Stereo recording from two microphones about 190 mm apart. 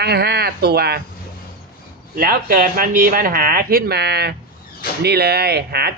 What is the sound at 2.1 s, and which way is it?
Speech, 50° right (ahead or behind).